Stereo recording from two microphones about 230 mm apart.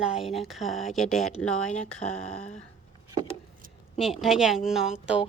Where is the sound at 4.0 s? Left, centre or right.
Centre.